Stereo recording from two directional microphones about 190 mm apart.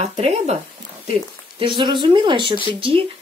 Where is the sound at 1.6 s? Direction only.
25° right (ahead or behind).